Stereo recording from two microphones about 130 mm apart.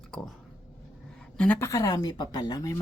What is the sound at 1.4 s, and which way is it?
Speech, 15° left (ahead or behind).